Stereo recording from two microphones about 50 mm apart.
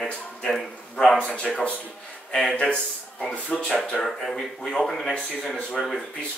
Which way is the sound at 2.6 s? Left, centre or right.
Left.